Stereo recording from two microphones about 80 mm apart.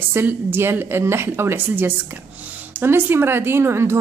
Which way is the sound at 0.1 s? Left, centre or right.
Right.